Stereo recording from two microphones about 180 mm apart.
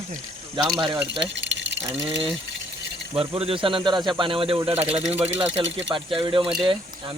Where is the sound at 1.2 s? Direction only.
85° right.